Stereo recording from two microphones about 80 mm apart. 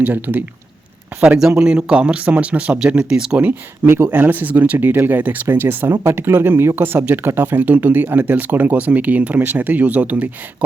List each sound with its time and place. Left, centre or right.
0.0 s speech: right
1.4 s speech: centre
3.8 s speech: right